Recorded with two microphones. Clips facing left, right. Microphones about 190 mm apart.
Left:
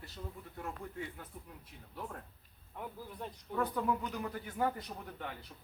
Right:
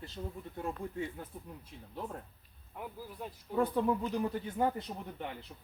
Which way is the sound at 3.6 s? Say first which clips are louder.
Right 4 dB; 25° right (ahead or behind).